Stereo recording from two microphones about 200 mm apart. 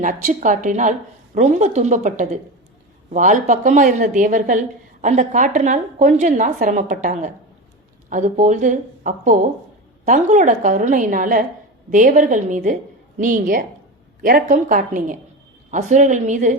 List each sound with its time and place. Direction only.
0.0 s a woman's voice: 40° right (ahead or behind)